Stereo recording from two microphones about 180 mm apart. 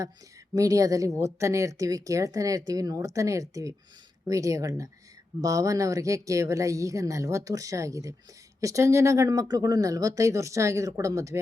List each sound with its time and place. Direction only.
0.5 s speech: 20° right (ahead or behind)